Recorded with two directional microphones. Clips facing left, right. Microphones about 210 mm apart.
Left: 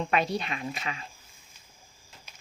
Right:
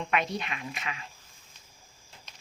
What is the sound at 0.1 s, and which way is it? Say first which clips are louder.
Speech: left 1 dB; 35° left (ahead or behind).